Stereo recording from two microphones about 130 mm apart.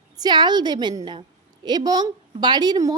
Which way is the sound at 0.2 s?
35° right (ahead or behind).